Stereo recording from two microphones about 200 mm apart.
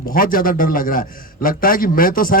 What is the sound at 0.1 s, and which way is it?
A man's voice, 45° left (ahead or behind).